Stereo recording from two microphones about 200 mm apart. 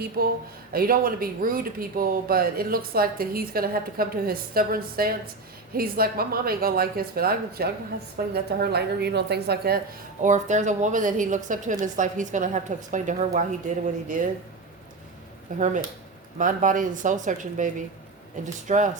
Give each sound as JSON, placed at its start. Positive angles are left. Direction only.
{"t": 0.2, "sound": "speech", "side_deg": -45}
{"t": 10.2, "sound": "a woman's voice", "side_deg": -35}
{"t": 15.5, "sound": "a woman's voice", "side_deg": -40}
{"t": 18.7, "sound": "a woman's voice", "side_deg": -35}